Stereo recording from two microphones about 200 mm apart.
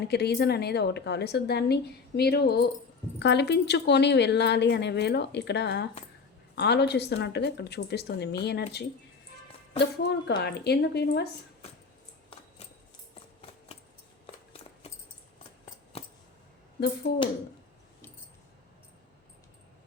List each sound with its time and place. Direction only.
0.1 s a woman's voice: 55° left (ahead or behind)
10.1 s a woman's voice: 55° left (ahead or behind)
14.8 s mouse: 30° left (ahead or behind)
15.9 s a sound: 30° left (ahead or behind)
17.1 s a woman's voice: 55° left (ahead or behind)